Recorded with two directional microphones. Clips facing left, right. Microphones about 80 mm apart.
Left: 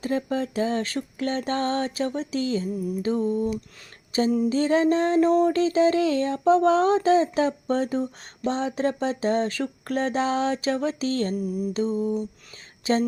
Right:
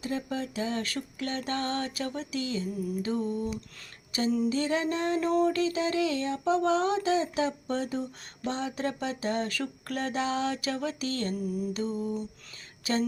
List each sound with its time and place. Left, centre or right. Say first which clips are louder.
0.0 s mantra: left 7 dB; left
12.8 s speech: left 6 dB; left